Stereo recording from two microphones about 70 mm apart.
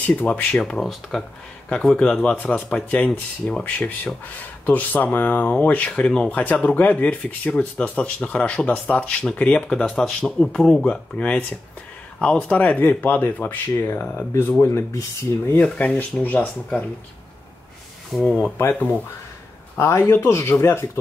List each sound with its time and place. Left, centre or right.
0.0 s speech: left
14.6 s speech: left
15.5 s speech: left
18.1 s speech: centre
18.6 s speech: left